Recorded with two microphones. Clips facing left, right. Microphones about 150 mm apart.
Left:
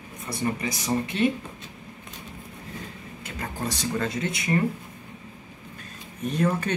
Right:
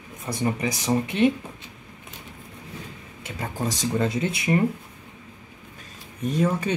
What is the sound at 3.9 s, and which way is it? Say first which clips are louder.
Speech: right 4 dB; 25° right (ahead or behind).